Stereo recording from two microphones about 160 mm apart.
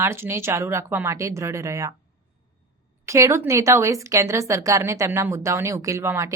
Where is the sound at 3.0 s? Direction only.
20° right (ahead or behind).